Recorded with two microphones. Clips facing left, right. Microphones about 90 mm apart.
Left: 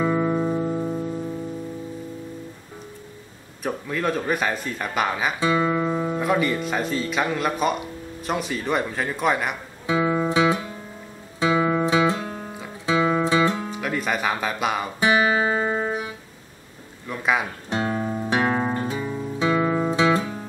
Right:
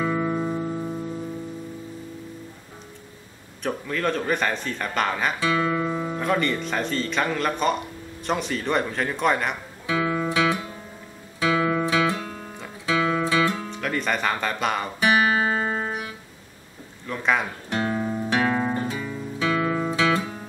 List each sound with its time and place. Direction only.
0.0 s music: 10° left (ahead or behind)
3.6 s a man's voice: 5° left (ahead or behind)
5.4 s a man's voice: 25° left (ahead or behind); by 9.6 s 5° left (ahead or behind)
9.8 s music: 20° left (ahead or behind)
11.3 s guitar: 20° left (ahead or behind)
12.8 s music: 20° left (ahead or behind)
13.7 s speech: 5° left (ahead or behind)
15.0 s music: 20° left (ahead or behind)
17.1 s a man's voice: 5° left (ahead or behind)
17.6 s guitar: 20° left (ahead or behind)
18.3 s music: 20° left (ahead or behind)
18.9 s guitar: 25° left (ahead or behind)